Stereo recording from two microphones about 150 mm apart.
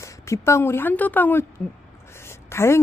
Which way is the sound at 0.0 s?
20° left (ahead or behind).